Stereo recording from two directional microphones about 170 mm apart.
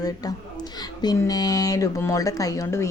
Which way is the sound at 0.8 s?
25° left (ahead or behind).